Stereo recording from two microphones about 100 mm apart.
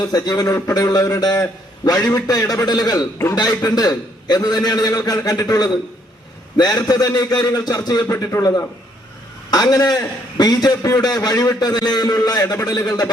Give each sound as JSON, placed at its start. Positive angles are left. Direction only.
{"t": 0.1, "sound": "a man's voice", "side_deg": 35}
{"t": 8.4, "sound": "a man's voice", "side_deg": 40}